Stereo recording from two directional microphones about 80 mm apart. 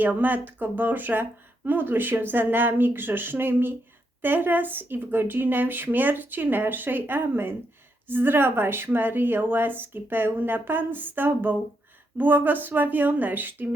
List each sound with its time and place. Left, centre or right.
0.0 s speech: right